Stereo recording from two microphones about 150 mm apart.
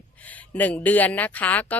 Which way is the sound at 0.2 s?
10° left (ahead or behind).